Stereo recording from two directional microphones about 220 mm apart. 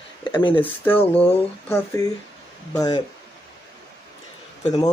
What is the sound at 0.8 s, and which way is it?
Speech, 10° left (ahead or behind).